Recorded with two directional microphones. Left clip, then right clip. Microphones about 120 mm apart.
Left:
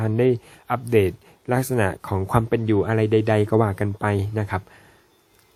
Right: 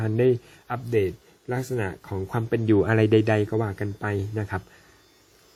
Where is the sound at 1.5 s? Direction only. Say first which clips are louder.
Left 7 dB; 60° left (ahead or behind).